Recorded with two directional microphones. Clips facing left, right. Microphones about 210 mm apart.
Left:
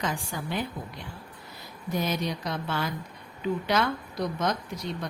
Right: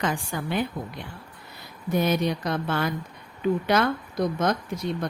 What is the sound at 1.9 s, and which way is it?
A woman's voice, 55° right (ahead or behind).